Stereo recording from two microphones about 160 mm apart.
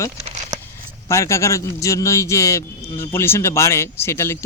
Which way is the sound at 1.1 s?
15° left (ahead or behind).